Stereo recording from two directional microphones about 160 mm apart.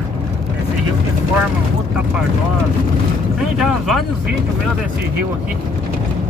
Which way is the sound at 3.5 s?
Centre (ahead or behind).